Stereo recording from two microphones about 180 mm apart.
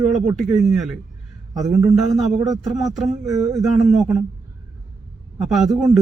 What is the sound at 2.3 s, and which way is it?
Speech, 20° right (ahead or behind).